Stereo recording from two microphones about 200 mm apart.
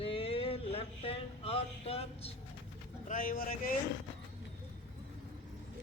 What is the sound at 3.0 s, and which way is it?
Speech, 40° left (ahead or behind).